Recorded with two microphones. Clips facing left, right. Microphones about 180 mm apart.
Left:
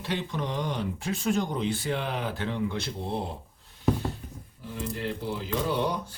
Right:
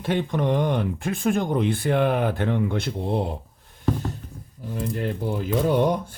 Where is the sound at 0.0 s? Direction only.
50° right (ahead or behind).